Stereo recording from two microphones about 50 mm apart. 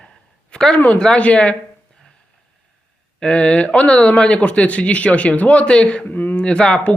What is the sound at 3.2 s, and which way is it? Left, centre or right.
Speech, centre.